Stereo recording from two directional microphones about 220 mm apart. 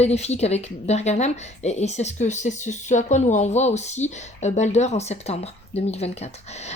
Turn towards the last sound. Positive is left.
turn(degrees=30)  # may be behind; listen again after turning